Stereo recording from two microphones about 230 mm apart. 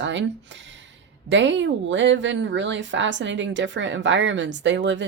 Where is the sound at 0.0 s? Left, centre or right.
Right.